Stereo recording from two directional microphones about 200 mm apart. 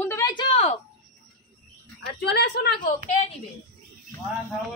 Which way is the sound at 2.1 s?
55° left (ahead or behind).